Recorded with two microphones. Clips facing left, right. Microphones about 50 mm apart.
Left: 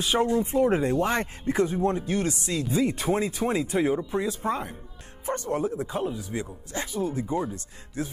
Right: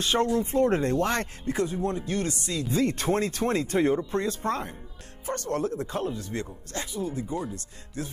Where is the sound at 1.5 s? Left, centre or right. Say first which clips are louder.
Left 4 dB; left.